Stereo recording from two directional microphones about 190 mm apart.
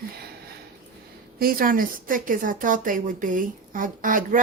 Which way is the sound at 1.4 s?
50° right (ahead or behind).